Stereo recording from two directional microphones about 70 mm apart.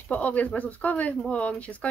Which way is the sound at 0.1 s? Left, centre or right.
Left.